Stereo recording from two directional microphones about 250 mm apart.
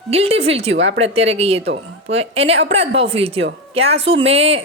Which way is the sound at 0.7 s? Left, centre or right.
Right.